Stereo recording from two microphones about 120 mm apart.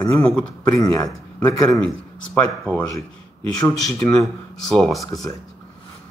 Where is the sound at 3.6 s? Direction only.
25° left (ahead or behind).